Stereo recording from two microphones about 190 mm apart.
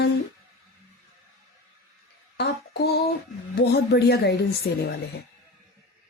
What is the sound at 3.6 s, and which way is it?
Speech, 60° left (ahead or behind).